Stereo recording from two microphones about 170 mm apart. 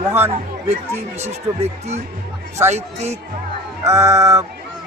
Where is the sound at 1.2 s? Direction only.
40° right (ahead or behind).